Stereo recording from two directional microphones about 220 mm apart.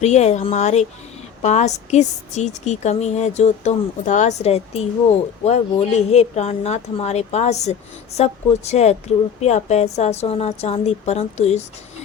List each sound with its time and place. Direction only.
0.0 s a woman's voice: 30° left (ahead or behind)